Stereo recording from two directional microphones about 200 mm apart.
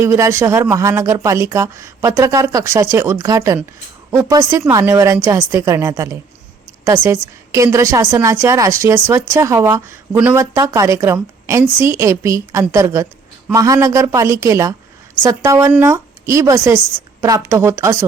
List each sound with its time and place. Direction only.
0.0 s a woman's voice: 15° right (ahead or behind)